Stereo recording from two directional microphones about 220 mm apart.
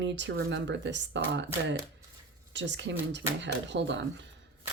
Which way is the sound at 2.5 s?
55° right (ahead or behind).